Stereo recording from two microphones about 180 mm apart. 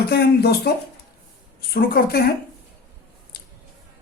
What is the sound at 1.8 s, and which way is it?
Speech, 60° left (ahead or behind).